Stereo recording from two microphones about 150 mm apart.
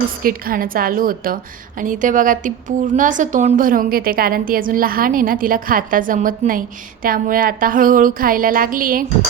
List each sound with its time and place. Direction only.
0.2 s a woman's voice: 75° right (ahead or behind)